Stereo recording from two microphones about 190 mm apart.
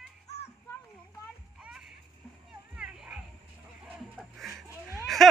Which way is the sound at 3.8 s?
Centre (ahead or behind).